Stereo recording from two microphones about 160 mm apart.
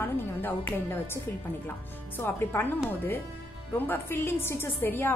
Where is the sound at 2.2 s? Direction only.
10° left (ahead or behind).